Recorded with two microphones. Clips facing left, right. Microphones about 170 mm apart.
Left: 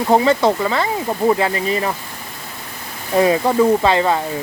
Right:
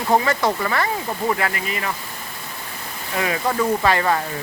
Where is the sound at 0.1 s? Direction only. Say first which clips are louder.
Left 5 dB; 25° left (ahead or behind).